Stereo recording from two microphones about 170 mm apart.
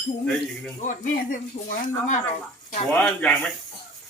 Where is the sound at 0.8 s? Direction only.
50° left (ahead or behind).